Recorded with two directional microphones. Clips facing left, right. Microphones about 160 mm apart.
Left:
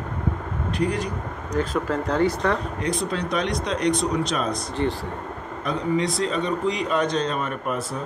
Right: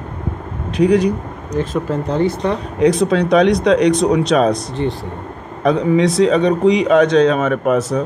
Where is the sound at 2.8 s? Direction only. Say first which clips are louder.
Right 12 dB; 85° right.